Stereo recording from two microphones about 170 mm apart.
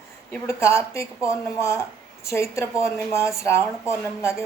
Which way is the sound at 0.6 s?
15° left (ahead or behind).